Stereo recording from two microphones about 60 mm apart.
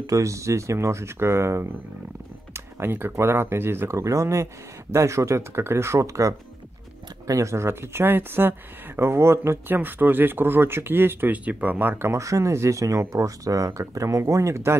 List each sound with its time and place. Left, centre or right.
0.0 s speech: right
2.5 s speech: right
4.0 s speech: right
9.8 s speech: right
11.3 s speech: right
12.1 s speech: right